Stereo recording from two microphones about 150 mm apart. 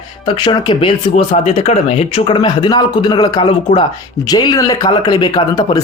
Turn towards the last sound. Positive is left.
turn(degrees=25)  # may be behind; listen again after turning